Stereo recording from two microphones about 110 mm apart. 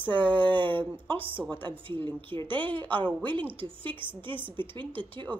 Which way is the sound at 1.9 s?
50° right (ahead or behind).